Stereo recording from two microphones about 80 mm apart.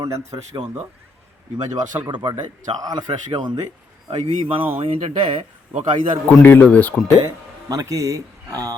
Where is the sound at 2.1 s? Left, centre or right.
Right.